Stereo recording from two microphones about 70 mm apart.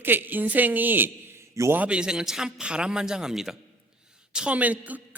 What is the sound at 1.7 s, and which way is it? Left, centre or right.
A man's voice, centre.